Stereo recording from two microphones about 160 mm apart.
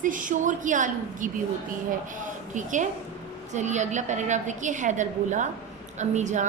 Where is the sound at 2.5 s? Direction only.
50° right (ahead or behind).